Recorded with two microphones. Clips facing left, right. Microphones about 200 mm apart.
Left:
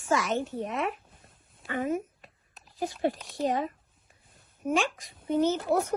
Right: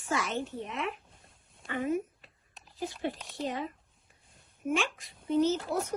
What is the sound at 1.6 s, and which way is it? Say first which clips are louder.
Speech: left 3 dB; 5° left (ahead or behind).